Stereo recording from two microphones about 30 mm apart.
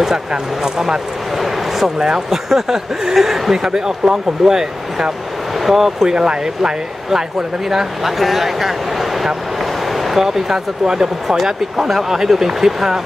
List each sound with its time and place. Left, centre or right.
0.3 s speech: centre
2.3 s speech: centre
3.5 s speech: centre
5.6 s speech: centre
6.0 s speech: right
8.2 s speech: centre
9.6 s vehicle: centre
10.2 s speech: centre